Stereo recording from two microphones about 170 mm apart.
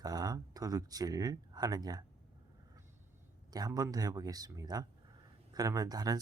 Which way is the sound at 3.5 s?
20° right (ahead or behind).